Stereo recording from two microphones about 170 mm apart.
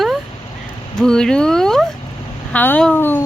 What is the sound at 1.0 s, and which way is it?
A woman's voice, 5° left (ahead or behind).